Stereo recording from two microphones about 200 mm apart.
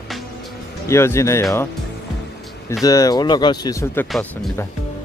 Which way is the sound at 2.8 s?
15° left (ahead or behind).